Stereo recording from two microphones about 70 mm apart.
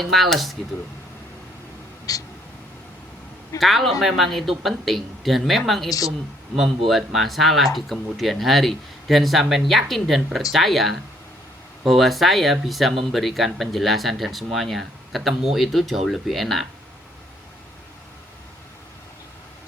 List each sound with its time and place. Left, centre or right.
0.0 s speech: centre
2.1 s a sound: left
3.6 s speech: centre